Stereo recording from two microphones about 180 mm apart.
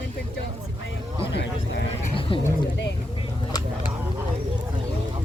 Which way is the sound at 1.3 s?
70° left (ahead or behind).